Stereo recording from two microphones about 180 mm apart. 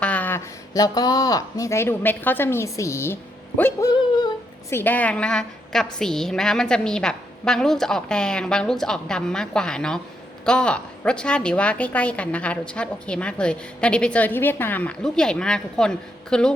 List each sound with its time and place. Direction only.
0.0 s speech: 10° left (ahead or behind)
3.6 s a sound: 15° left (ahead or behind)
4.7 s a woman's voice: 10° left (ahead or behind)